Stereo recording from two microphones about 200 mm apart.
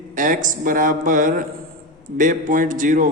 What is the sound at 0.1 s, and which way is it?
A man's voice, 40° right (ahead or behind).